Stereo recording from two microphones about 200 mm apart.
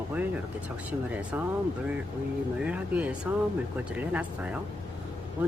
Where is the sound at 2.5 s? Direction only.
5° right (ahead or behind).